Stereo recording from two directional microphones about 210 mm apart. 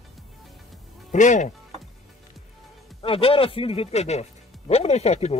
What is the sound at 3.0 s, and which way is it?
Speech, 25° left (ahead or behind).